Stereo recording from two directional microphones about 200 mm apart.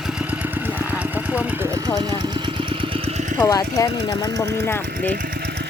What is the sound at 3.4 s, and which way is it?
Speech, 15° left (ahead or behind).